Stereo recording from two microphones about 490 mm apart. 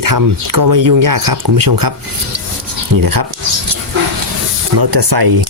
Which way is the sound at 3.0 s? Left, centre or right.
Right.